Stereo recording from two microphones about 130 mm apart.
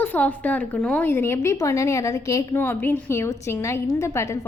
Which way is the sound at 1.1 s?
20° left (ahead or behind).